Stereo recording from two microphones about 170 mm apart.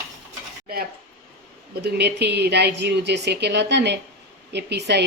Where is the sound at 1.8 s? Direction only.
75° right (ahead or behind).